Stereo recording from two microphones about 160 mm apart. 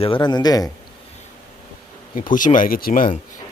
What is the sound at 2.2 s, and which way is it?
Speech, 55° left (ahead or behind).